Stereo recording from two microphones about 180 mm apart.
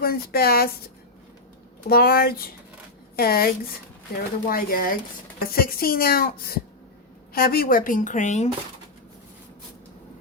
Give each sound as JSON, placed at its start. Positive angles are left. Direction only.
{"t": 0.0, "sound": "a woman's voice", "side_deg": 60}
{"t": 1.9, "sound": "a woman's voice", "side_deg": 55}